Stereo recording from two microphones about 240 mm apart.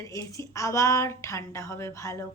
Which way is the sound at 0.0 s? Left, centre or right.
Centre.